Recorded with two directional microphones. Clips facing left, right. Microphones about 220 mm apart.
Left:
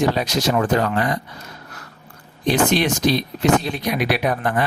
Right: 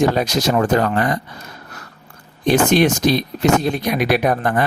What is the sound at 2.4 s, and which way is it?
Speech, 50° right (ahead or behind).